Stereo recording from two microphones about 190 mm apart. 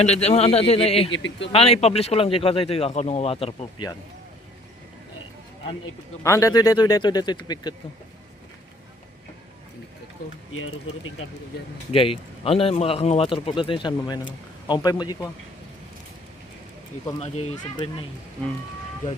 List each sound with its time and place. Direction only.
0.0 s speech: 35° left (ahead or behind)
6.2 s speech: 15° left (ahead or behind)
10.5 s speech: 90° left
11.9 s speech: 30° left (ahead or behind)
17.2 s speech: 35° left (ahead or behind)